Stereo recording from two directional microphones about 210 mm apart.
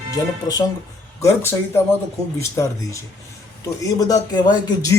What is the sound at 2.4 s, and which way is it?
Speech, 15° left (ahead or behind).